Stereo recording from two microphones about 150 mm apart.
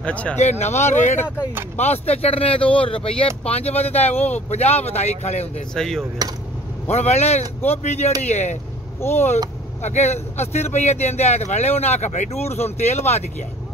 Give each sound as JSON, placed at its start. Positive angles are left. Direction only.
{"t": 0.0, "sound": "speech", "side_deg": 10}
{"t": 0.4, "sound": "a man's voice", "side_deg": 50}
{"t": 5.8, "sound": "a sound", "side_deg": 5}
{"t": 6.9, "sound": "a man's voice", "side_deg": 45}
{"t": 9.0, "sound": "speech", "side_deg": 15}
{"t": 9.8, "sound": "a man's voice", "side_deg": 50}